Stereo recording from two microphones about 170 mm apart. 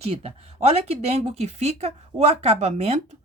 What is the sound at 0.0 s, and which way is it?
Speech, 35° right (ahead or behind).